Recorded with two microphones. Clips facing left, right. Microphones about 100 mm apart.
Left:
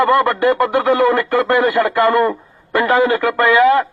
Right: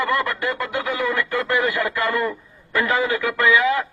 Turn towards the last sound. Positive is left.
turn(degrees=50)  # may be behind; listen again after turning